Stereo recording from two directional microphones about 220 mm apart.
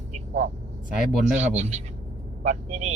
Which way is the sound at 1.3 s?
30° right (ahead or behind).